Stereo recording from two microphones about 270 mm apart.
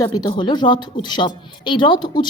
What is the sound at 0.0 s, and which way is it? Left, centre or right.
Speech, centre.